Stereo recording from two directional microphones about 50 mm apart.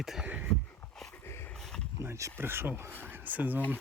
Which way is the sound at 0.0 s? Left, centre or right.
Centre.